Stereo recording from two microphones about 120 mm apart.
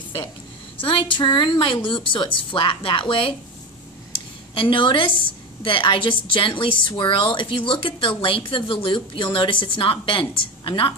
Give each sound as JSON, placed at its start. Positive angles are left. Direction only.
{"t": 0.7, "sound": "speech", "side_deg": 45}
{"t": 4.6, "sound": "speech", "side_deg": 45}